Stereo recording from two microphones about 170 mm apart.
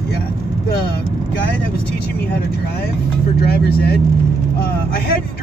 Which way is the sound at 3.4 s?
65° left (ahead or behind).